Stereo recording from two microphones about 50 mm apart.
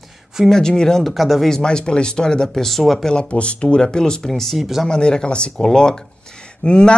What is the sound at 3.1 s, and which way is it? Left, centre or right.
Speech, left.